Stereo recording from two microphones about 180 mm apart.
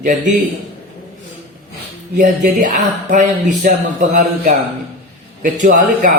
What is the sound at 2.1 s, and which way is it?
A man's voice, 45° right (ahead or behind).